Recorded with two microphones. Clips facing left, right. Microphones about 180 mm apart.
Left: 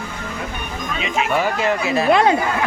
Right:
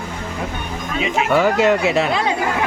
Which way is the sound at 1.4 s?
80° right.